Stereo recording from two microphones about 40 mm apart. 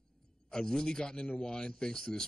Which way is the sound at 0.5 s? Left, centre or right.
Centre.